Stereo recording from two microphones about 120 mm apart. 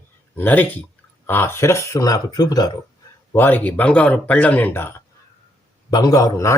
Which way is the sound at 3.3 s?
15° left (ahead or behind).